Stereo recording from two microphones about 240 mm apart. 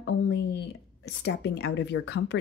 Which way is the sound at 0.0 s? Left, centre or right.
Left.